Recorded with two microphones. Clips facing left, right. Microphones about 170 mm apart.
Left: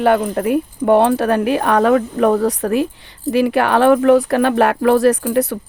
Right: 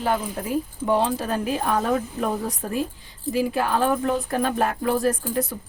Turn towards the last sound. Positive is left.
turn(degrees=70)  # may be behind; listen again after turning